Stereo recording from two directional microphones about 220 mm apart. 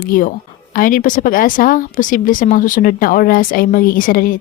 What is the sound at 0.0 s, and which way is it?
A woman's voice, 40° left (ahead or behind).